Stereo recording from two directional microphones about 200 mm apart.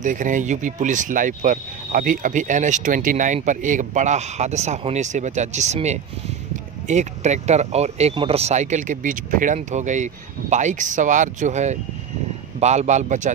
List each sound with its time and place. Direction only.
0.0 s speech: 40° right (ahead or behind)